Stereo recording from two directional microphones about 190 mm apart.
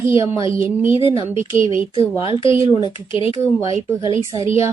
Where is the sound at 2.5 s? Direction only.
15° right (ahead or behind).